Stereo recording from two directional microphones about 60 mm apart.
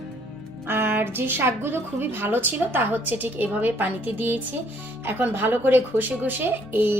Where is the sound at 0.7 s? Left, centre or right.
Right.